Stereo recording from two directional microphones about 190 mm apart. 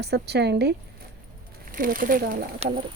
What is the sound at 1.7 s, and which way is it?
Speech, 45° right (ahead or behind).